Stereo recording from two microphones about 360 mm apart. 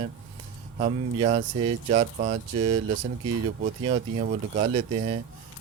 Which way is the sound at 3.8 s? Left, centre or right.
Centre.